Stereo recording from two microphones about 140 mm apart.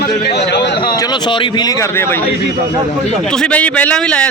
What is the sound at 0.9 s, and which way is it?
Speech, 30° left (ahead or behind).